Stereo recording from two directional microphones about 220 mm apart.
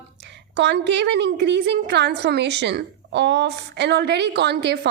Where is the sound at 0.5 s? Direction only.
50° right (ahead or behind).